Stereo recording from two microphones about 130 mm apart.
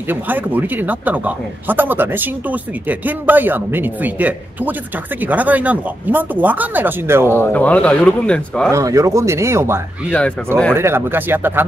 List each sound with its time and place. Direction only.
0.1 s speech: 15° right (ahead or behind)
7.3 s speech: 10° left (ahead or behind)
8.7 s speech: 25° right (ahead or behind)